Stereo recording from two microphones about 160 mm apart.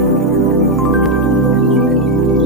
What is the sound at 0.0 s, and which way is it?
Music, centre (ahead or behind).